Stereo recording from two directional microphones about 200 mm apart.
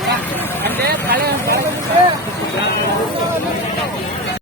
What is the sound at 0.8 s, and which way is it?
Vehicle, 50° right (ahead or behind).